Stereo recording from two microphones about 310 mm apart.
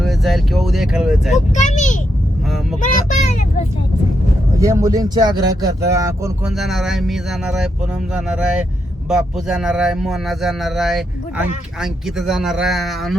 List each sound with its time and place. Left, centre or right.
0.0 s a man's voice: centre
1.5 s a child's voice: left
4.6 s a man's voice: centre